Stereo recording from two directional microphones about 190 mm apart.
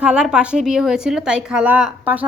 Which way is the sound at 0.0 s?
5° right (ahead or behind).